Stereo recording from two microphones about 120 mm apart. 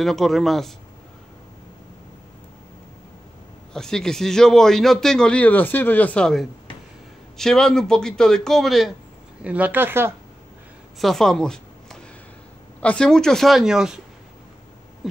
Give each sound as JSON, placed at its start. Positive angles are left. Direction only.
{"t": 0.0, "sound": "a man's voice", "side_deg": 0}
{"t": 3.7, "sound": "a man's voice", "side_deg": 5}
{"t": 9.4, "sound": "speech", "side_deg": -10}
{"t": 11.0, "sound": "a man's voice", "side_deg": 5}